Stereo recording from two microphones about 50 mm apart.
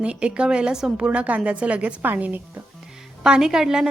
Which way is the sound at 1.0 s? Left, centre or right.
Right.